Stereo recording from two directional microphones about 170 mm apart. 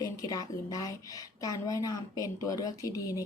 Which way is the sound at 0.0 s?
20° left (ahead or behind).